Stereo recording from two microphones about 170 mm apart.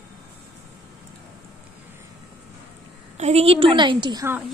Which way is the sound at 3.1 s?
40° right (ahead or behind).